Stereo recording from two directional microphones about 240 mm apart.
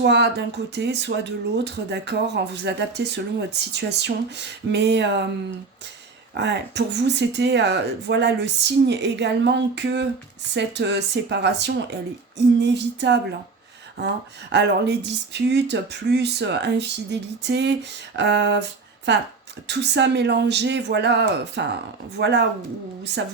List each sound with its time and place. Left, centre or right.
0.0 s speech: right
6.3 s speech: right
14.5 s speech: right